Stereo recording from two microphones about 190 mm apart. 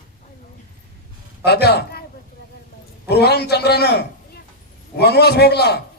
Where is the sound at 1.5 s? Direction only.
60° left (ahead or behind).